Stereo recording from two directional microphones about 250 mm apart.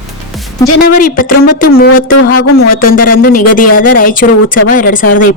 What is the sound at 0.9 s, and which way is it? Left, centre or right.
Speech, left.